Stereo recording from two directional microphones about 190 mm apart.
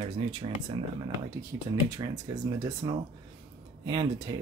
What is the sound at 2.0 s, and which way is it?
Speech, 25° right (ahead or behind).